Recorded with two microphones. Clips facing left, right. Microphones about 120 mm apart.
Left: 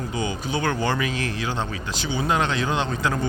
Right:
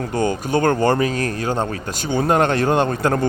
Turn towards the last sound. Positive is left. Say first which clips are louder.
# right 6 dB
turn(degrees=-55)  # may be behind; listen again after turning